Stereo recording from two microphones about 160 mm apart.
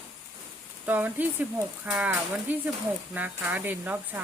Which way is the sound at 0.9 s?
10° right (ahead or behind).